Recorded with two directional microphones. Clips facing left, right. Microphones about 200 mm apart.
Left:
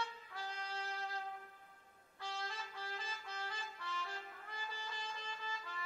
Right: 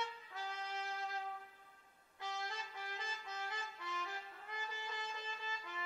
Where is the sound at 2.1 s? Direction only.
20° right (ahead or behind).